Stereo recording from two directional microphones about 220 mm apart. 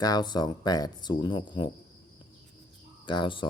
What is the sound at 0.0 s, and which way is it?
Speech, 20° left (ahead or behind).